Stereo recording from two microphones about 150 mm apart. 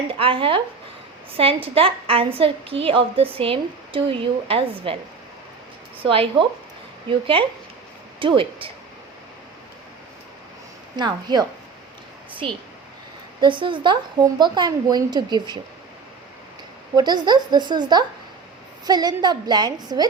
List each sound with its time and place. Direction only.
0.1 s a woman's voice: 35° right (ahead or behind)
6.0 s a woman's voice: 35° right (ahead or behind)
10.9 s speech: 30° right (ahead or behind)
13.4 s speech: 35° right (ahead or behind)
16.9 s speech: 30° right (ahead or behind)